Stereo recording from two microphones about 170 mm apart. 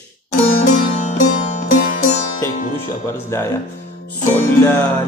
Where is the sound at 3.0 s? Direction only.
15° left (ahead or behind).